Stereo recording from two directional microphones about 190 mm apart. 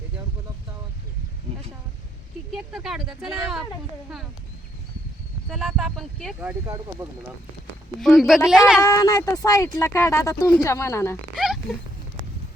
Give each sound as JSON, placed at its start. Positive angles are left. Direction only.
{"t": 2.5, "sound": "speech", "side_deg": 0}
{"t": 5.5, "sound": "speech", "side_deg": 0}
{"t": 6.4, "sound": "speech", "side_deg": -10}
{"t": 7.9, "sound": "speech", "side_deg": 0}
{"t": 8.8, "sound": "speech", "side_deg": 15}
{"t": 11.3, "sound": "a sound", "side_deg": 0}